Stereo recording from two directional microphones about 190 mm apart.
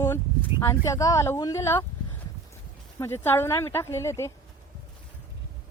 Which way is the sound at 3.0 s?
10° left (ahead or behind).